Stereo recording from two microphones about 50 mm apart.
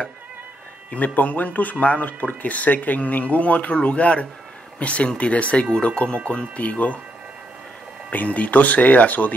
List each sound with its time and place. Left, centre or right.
0.9 s speech: left
8.1 s speech: left